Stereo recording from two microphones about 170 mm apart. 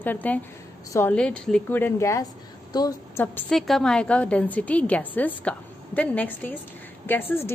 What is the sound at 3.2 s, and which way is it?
A woman's voice, 10° left (ahead or behind).